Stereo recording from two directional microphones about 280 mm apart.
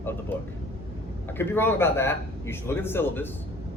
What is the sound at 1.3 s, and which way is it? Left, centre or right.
A man's voice, centre.